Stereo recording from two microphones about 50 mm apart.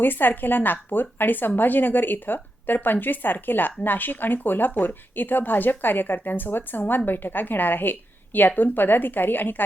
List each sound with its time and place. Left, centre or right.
0.0 s speech: left